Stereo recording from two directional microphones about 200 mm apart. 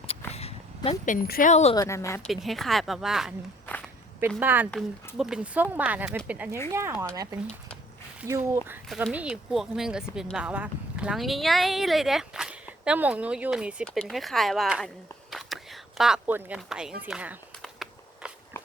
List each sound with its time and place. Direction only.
0.9 s speech: 40° left (ahead or behind)
1.7 s speech: 15° left (ahead or behind)
2.2 s speech: centre (ahead or behind)
4.4 s speech: 10° right (ahead or behind)
8.2 s speech: 10° right (ahead or behind)
15.3 s a sound: centre (ahead or behind)